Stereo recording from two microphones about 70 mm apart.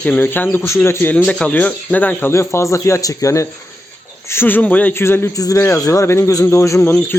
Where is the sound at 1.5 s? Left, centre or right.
Left.